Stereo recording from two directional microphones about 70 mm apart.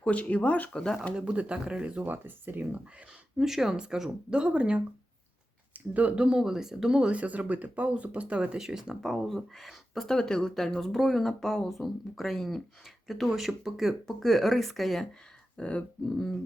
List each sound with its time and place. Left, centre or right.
0.0 s speech: centre
1.1 s speech: centre
2.0 s speech: right
3.3 s speech: centre
10.2 s speech: centre
15.5 s speech: centre